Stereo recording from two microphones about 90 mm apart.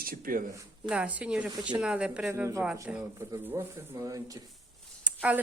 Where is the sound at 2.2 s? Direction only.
30° right (ahead or behind).